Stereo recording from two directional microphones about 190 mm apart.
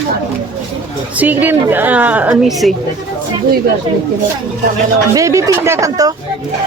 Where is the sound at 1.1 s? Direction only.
10° right (ahead or behind).